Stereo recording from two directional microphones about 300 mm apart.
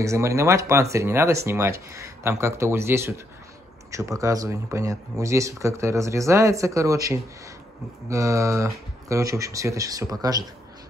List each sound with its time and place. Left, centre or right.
0.0 s speech: centre